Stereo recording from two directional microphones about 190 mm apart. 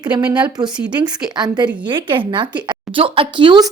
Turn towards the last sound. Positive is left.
turn(degrees=-25)  # may be behind; listen again after turning